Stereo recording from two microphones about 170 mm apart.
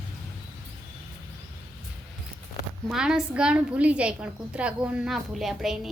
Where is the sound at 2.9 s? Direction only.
5° right (ahead or behind).